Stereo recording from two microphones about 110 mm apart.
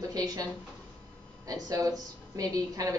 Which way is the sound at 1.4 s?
35° right (ahead or behind).